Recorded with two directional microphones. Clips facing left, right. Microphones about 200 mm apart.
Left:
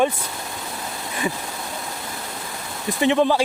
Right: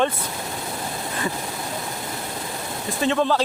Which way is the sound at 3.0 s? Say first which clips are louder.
Left 3 dB; 15° left (ahead or behind).